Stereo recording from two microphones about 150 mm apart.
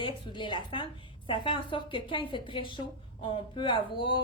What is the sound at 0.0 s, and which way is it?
Speech, 30° left (ahead or behind).